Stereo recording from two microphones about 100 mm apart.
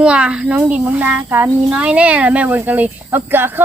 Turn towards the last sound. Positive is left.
turn(degrees=-20)  # may be behind; listen again after turning